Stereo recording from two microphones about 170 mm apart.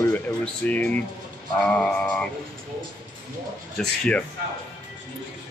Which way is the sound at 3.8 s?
5° left (ahead or behind).